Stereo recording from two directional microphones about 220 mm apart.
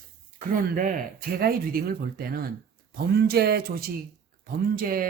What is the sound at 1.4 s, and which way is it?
Speech, 45° right (ahead or behind).